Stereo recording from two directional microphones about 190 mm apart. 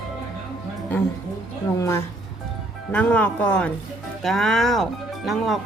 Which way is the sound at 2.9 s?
5° left (ahead or behind).